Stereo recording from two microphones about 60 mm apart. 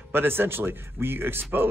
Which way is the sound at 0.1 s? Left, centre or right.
Right.